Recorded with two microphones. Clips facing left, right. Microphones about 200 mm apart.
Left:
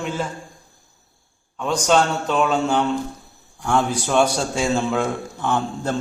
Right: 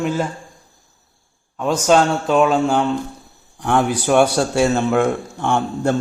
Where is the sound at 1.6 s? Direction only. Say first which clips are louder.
Right 3 dB; 5° right (ahead or behind).